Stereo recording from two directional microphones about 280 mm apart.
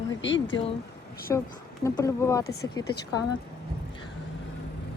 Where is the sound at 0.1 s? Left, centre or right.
Left.